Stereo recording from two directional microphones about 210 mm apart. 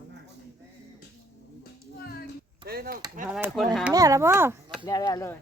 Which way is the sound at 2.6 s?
45° right (ahead or behind).